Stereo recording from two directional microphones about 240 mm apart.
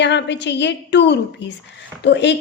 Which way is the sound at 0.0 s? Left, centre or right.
Left.